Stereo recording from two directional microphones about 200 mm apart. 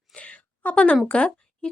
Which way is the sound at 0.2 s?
5° left (ahead or behind).